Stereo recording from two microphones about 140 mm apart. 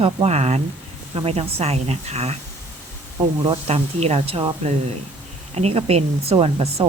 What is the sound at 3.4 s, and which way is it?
Speech, 35° right (ahead or behind).